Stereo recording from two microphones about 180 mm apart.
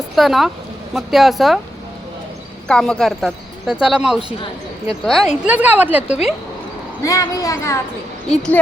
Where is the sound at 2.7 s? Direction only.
5° left (ahead or behind).